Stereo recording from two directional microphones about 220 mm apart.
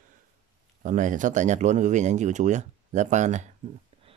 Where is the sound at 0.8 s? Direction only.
35° right (ahead or behind).